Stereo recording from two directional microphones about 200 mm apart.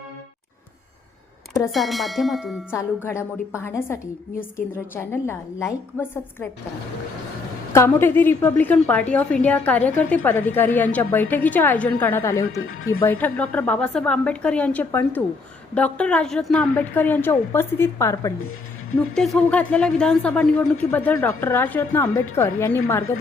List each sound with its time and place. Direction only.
1.7 s a sound: centre (ahead or behind)
2.6 s a woman's voice: 10° left (ahead or behind)
7.7 s a woman's voice: 10° left (ahead or behind)
12.5 s speech: 90° left
13.0 s a woman's voice: 10° left (ahead or behind)
18.9 s a woman's voice: centre (ahead or behind)